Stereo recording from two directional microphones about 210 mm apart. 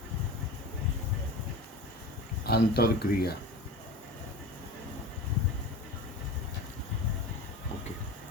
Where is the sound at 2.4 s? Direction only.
50° left (ahead or behind).